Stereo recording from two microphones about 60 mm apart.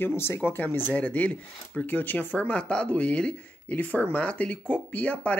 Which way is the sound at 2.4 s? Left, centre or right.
Centre.